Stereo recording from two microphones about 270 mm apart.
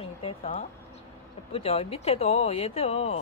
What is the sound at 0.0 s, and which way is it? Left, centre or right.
Speech, left.